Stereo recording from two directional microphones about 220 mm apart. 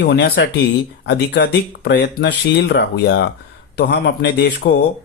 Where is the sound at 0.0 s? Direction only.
45° left (ahead or behind).